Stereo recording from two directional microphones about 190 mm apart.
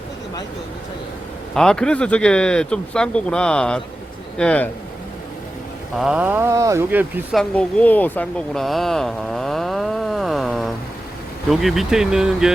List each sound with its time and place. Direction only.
1.5 s speech: 5° left (ahead or behind)
6.0 s speech: 5° right (ahead or behind)
7.3 s a woman's voice: 5° left (ahead or behind)